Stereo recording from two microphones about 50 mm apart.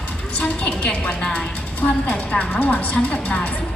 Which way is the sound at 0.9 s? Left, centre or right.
Left.